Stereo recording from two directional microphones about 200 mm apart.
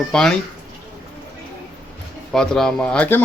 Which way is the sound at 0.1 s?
5° left (ahead or behind).